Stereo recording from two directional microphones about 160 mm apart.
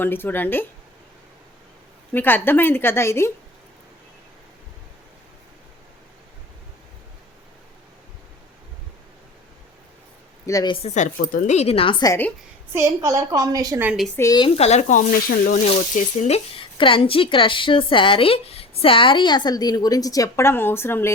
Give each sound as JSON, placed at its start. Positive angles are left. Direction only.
{"t": 0.0, "sound": "a woman's voice", "side_deg": 15}
{"t": 2.1, "sound": "a woman's voice", "side_deg": 15}
{"t": 10.4, "sound": "speech", "side_deg": 25}
{"t": 10.8, "sound": "speech", "side_deg": 50}
{"t": 11.2, "sound": "speech", "side_deg": 60}
{"t": 12.7, "sound": "a woman's voice", "side_deg": -15}
{"t": 13.8, "sound": "a woman's voice", "side_deg": 0}
{"t": 14.2, "sound": "speech", "side_deg": 25}
{"t": 15.3, "sound": "speech", "side_deg": 70}
{"t": 15.6, "sound": "speech", "side_deg": 40}